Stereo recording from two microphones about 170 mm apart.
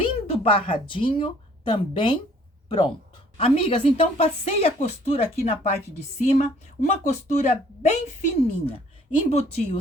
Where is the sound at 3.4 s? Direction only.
35° left (ahead or behind).